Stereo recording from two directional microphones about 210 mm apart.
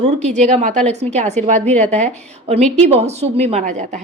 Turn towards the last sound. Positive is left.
turn(degrees=-35)  # may be behind; listen again after turning